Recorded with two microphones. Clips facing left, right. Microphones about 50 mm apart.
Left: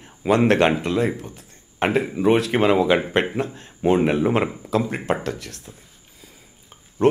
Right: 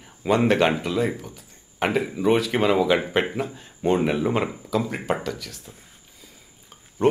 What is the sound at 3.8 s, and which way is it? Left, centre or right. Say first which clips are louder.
Speech: left 3 dB; centre.